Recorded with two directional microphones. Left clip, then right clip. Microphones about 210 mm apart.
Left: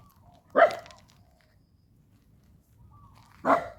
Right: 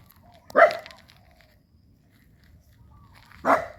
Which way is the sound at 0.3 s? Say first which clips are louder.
Right 4 dB; centre (ahead or behind).